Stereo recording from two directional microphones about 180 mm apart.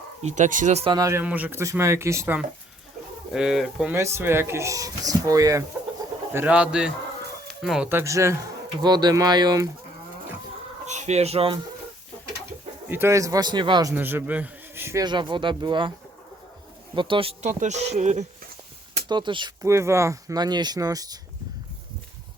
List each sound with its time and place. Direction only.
0.2 s speech: 40° right (ahead or behind)
0.9 s speech: 20° right (ahead or behind)
3.3 s speech: centre (ahead or behind)
3.9 s speech: 15° right (ahead or behind)
6.3 s speech: 10° right (ahead or behind)
10.8 s speech: 40° right (ahead or behind)
12.9 s speech: 15° right (ahead or behind)
13.9 s speech: 10° right (ahead or behind)
15.0 s speech: 25° right (ahead or behind)
16.9 s speech: 25° right (ahead or behind)
19.0 s speech: 25° right (ahead or behind)